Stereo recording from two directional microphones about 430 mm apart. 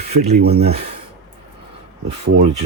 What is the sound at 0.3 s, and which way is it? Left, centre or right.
Speech, right.